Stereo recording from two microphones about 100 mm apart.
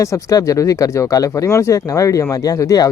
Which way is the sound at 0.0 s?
35° left (ahead or behind).